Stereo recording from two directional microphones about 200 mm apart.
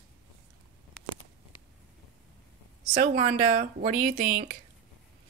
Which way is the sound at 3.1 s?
40° right (ahead or behind).